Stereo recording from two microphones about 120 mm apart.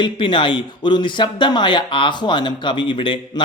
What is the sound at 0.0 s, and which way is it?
Speech, 40° left (ahead or behind).